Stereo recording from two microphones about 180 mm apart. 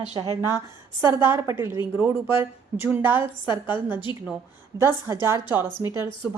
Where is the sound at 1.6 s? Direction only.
15° right (ahead or behind).